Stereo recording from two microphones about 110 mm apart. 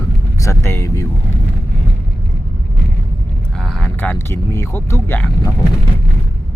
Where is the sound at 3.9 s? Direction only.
20° left (ahead or behind).